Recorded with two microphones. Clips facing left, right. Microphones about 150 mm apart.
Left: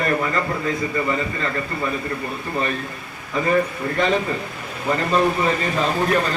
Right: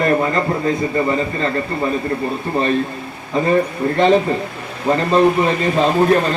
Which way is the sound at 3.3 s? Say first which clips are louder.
Right 4 dB; 30° right (ahead or behind).